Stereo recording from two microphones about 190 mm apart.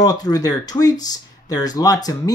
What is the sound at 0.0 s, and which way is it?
Speech, 20° left (ahead or behind).